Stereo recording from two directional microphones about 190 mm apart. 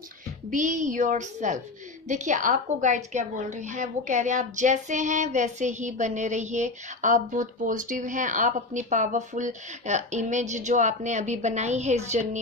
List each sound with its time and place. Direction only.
0.5 s a woman's voice: 40° right (ahead or behind)